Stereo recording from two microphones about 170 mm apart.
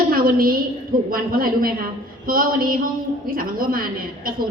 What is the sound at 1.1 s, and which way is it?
A woman's voice, 55° right (ahead or behind).